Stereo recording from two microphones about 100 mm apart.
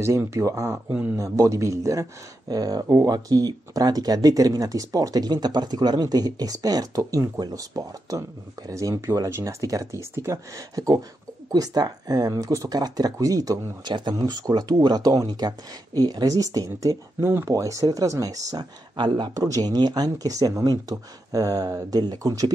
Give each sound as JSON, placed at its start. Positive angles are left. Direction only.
{"t": 0.0, "sound": "speech", "side_deg": -30}